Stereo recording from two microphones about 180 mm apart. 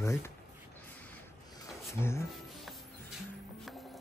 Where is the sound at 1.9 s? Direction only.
15° left (ahead or behind).